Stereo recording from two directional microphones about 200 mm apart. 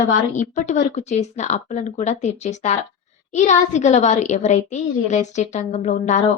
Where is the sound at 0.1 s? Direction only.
35° left (ahead or behind).